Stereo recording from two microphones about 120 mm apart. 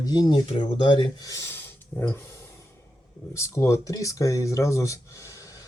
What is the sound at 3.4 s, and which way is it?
Speech, 25° left (ahead or behind).